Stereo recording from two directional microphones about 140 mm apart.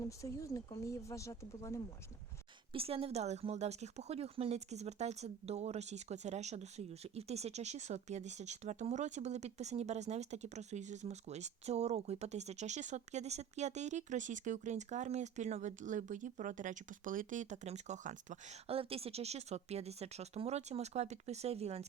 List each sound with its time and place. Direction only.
0.0 s speech: 20° left (ahead or behind)
2.7 s speech: 45° right (ahead or behind); by 18.3 s 60° right (ahead or behind)
18.7 s speech: 45° right (ahead or behind)